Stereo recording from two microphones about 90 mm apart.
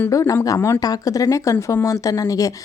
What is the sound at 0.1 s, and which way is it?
Speech, 40° left (ahead or behind).